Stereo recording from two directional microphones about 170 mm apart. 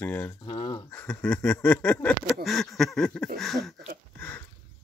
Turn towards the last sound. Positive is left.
turn(degrees=0)  # may be behind; listen again after turning